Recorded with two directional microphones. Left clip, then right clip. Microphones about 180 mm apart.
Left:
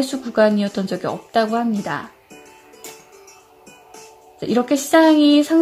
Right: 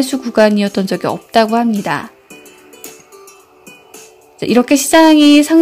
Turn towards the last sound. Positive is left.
turn(degrees=-25)  # may be behind; listen again after turning